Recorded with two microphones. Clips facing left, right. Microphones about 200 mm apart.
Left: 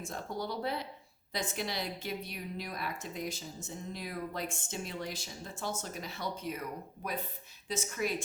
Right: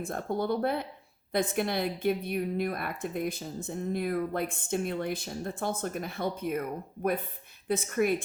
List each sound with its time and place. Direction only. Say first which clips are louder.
0.0 s a woman's voice: right 7 dB; 55° right (ahead or behind)